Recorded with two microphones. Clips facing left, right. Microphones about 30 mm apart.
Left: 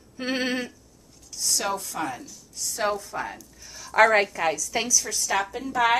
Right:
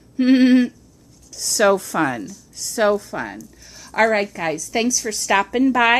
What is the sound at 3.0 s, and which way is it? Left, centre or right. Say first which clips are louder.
Speech: right 4 dB; right.